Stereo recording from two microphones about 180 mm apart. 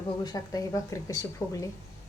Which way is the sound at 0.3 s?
20° left (ahead or behind).